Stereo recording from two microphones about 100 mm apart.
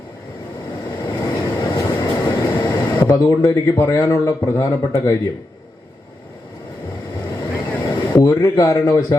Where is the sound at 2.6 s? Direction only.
40° left (ahead or behind).